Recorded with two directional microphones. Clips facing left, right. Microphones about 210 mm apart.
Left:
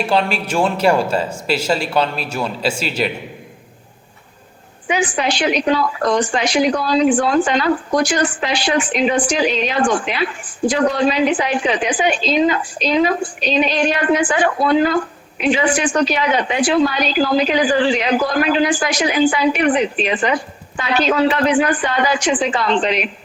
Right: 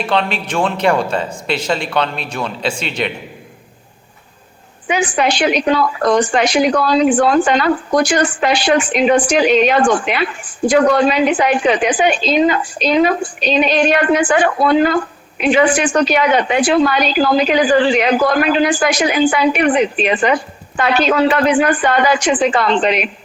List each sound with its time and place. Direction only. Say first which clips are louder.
0.3 s a man's voice: even; 10° left (ahead or behind)
4.9 s a woman's voice: right 3 dB; 60° right (ahead or behind)
15.9 s a woman's voice: right 3 dB; 70° right (ahead or behind)